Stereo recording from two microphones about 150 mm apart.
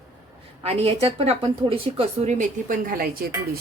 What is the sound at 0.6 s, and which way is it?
A woman's voice, 40° right (ahead or behind).